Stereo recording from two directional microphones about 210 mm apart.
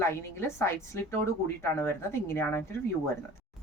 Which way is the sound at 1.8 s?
10° left (ahead or behind).